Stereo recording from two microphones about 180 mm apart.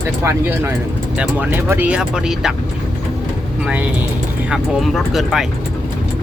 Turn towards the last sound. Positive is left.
turn(degrees=0)  # may be behind; listen again after turning